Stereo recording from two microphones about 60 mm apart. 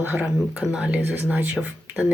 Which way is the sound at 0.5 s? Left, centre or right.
Centre.